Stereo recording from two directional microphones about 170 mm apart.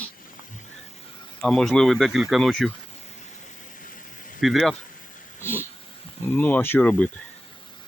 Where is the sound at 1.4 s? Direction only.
Centre (ahead or behind).